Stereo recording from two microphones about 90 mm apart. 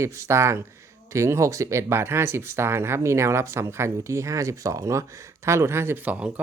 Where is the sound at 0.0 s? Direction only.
30° right (ahead or behind).